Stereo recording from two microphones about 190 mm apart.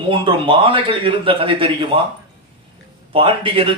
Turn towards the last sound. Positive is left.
turn(degrees=-25)  # may be behind; listen again after turning